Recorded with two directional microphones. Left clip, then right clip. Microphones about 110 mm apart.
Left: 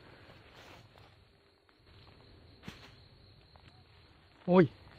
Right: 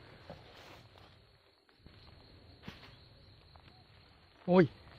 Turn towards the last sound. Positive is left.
turn(degrees=25)  # may be behind; listen again after turning